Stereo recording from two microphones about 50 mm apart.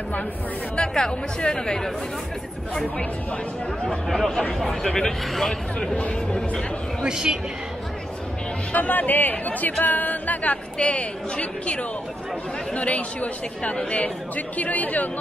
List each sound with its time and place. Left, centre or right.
0.7 s speech: centre
3.8 s speech: centre
5.9 s speech: left
7.0 s speech: centre
8.7 s speech: left